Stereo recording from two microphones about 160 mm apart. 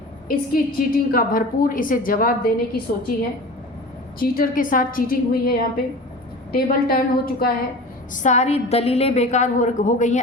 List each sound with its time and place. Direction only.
0.3 s a woman's voice: 65° left (ahead or behind)
4.2 s a woman's voice: 60° left (ahead or behind)
8.1 s a woman's voice: 50° left (ahead or behind)